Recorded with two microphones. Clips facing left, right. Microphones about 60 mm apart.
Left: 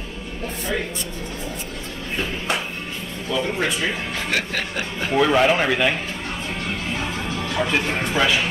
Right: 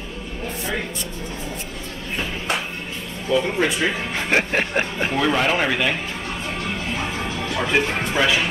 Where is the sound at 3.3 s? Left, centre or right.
Centre.